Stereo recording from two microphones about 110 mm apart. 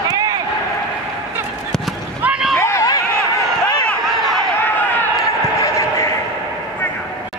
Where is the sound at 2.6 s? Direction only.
25° left (ahead or behind).